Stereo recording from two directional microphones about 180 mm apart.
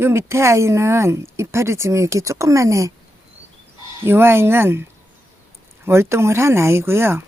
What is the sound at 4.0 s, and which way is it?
Speech, 15° right (ahead or behind).